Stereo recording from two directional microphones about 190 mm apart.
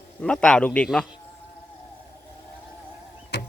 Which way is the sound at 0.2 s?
5° left (ahead or behind).